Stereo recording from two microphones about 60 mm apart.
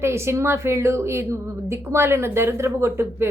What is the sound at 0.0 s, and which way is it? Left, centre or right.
A woman's voice, right.